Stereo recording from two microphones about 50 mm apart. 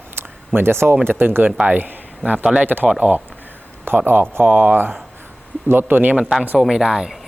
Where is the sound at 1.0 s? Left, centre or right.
Right.